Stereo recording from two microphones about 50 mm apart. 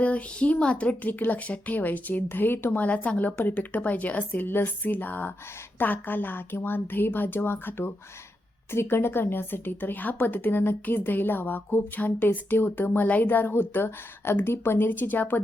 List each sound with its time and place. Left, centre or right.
0.0 s speech: left
2.7 s speech: left
8.7 s speech: left